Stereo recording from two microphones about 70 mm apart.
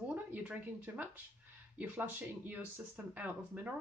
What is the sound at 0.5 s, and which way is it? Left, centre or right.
Speech, right.